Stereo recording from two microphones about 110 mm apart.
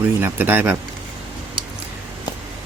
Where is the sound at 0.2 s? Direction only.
20° right (ahead or behind).